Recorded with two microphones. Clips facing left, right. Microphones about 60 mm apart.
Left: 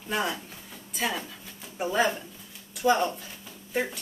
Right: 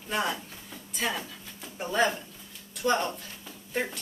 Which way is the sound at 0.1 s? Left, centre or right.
Centre.